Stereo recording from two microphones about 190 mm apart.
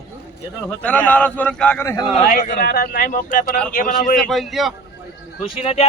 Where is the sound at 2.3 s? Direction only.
45° left (ahead or behind).